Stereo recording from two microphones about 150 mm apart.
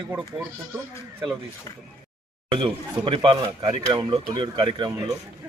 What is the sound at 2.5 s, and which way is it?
Speech, 35° right (ahead or behind).